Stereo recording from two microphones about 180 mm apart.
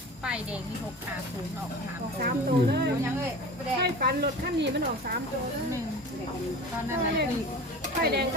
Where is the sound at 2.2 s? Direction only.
60° right (ahead or behind).